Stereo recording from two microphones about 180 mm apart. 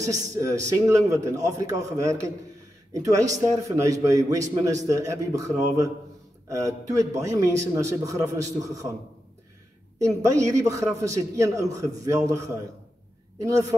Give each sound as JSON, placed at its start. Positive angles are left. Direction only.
{"t": 0.0, "sound": "a man's voice", "side_deg": -20}
{"t": 6.5, "sound": "a man's voice", "side_deg": -15}
{"t": 9.9, "sound": "a man's voice", "side_deg": -15}